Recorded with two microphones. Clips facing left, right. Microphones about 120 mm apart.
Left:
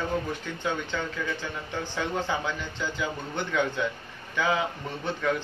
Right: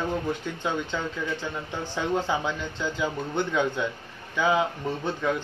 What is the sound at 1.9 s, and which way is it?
A man's voice, 20° right (ahead or behind).